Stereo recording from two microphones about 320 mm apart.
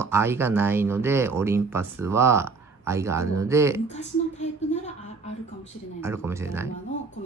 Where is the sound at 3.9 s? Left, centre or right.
Left.